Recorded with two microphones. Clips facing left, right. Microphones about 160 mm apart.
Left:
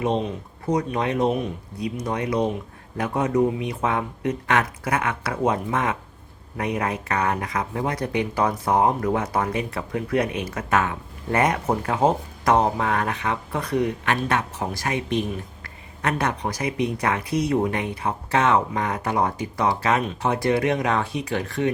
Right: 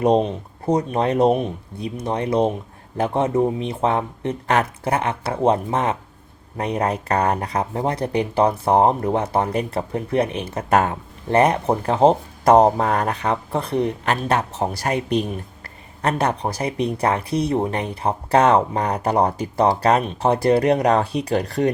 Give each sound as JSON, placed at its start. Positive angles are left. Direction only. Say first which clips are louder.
{"t": 0.0, "sound": "speech", "louder": "right 6 dB", "side_deg": -40}